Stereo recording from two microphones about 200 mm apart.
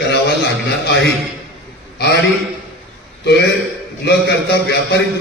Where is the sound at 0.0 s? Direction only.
60° left (ahead or behind).